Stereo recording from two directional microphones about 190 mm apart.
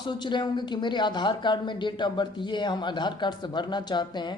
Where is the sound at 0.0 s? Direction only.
25° left (ahead or behind).